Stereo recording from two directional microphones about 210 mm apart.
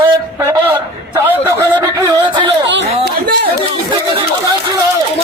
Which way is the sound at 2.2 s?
25° right (ahead or behind).